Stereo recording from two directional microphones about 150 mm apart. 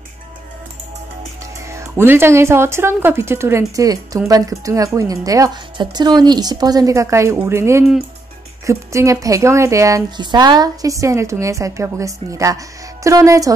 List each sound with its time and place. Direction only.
1.7 s a woman's voice: 15° right (ahead or behind)